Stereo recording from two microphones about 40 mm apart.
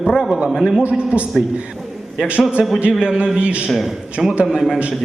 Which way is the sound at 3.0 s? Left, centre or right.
Right.